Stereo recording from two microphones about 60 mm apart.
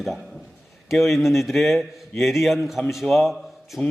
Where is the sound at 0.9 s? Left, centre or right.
Centre.